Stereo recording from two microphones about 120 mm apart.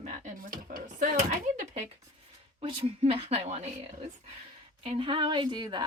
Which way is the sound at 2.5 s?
55° right (ahead or behind).